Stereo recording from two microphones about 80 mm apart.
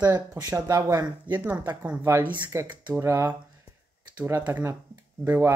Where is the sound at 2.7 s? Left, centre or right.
Centre.